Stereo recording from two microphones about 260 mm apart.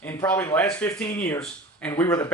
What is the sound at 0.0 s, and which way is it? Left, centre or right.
Speech, centre.